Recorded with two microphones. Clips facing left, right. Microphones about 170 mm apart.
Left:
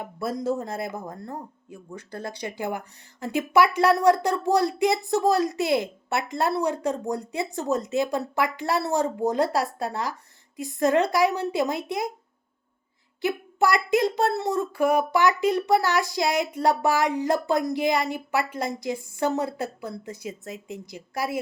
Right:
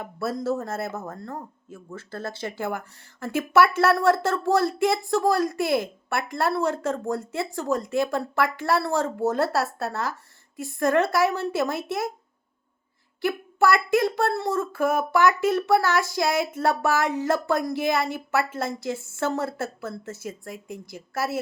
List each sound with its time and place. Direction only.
0.0 s speech: 15° left (ahead or behind)
13.2 s speech: 15° left (ahead or behind)